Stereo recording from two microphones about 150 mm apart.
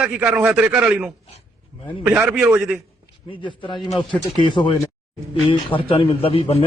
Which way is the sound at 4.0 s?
30° left (ahead or behind).